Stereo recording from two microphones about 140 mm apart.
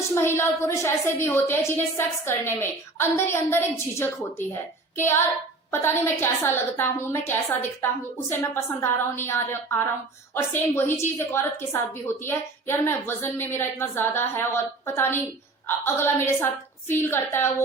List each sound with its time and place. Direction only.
0.1 s a woman's voice: 15° left (ahead or behind)